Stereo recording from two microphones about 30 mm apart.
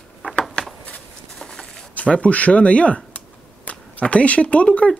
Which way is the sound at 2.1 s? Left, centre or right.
Left.